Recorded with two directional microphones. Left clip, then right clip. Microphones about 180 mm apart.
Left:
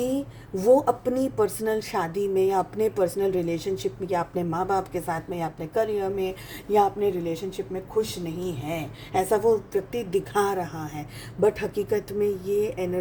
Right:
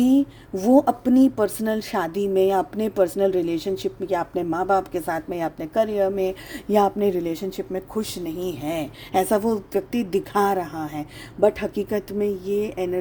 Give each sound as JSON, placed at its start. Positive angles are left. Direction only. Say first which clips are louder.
{"t": 0.6, "sound": "a woman's voice", "louder": "right 1 dB", "side_deg": -45}